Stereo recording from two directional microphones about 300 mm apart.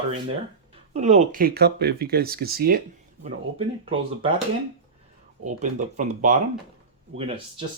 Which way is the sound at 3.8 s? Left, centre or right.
Centre.